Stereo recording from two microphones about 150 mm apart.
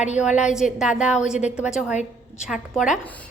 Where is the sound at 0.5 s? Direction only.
5° right (ahead or behind).